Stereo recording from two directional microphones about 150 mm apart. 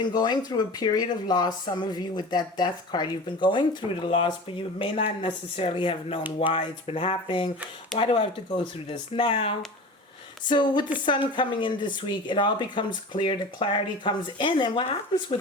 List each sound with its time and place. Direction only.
0.0 s speech: 30° left (ahead or behind)